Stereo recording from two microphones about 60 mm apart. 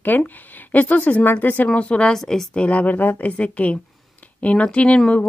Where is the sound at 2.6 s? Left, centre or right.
Left.